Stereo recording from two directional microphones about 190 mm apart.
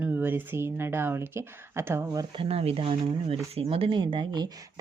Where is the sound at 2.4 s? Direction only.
30° right (ahead or behind).